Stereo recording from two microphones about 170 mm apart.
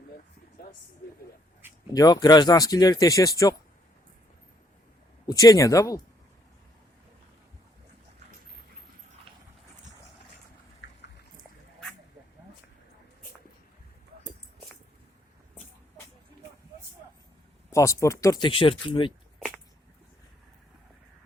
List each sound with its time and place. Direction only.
1.9 s speech: 25° left (ahead or behind)
5.2 s speech: 20° left (ahead or behind)
10.8 s a sound: 90° left
17.7 s speech: 15° left (ahead or behind)